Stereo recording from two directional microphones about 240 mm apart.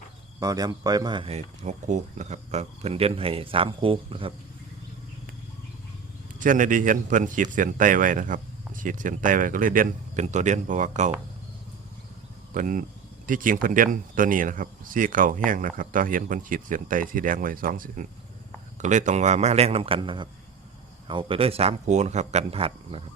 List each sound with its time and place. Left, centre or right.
0.3 s speech: centre
6.4 s a man's voice: right
12.5 s a man's voice: right